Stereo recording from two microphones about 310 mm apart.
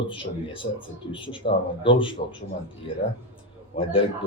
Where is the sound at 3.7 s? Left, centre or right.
Centre.